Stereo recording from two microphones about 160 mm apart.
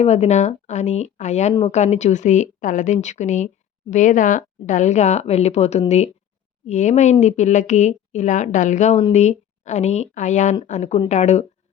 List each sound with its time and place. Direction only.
0.0 s a woman's voice: 45° left (ahead or behind)